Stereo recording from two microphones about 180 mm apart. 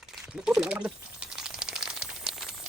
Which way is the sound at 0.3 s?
5° right (ahead or behind).